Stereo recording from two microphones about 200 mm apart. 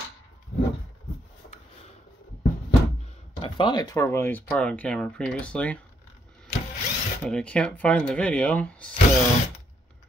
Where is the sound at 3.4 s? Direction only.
20° left (ahead or behind); by 5.8 s 5° left (ahead or behind).